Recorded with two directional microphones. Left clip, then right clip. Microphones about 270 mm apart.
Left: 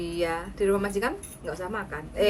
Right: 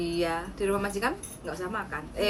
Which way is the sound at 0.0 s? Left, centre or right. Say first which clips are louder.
Even; centre.